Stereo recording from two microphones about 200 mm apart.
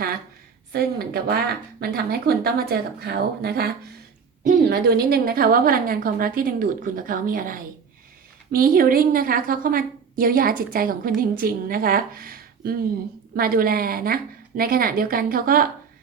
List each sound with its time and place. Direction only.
0.7 s a woman's voice: 50° right (ahead or behind)